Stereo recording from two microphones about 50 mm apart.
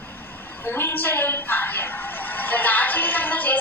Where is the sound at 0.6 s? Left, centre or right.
Left.